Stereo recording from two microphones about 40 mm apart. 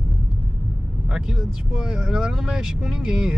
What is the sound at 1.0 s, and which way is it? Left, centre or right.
Vehicle, centre.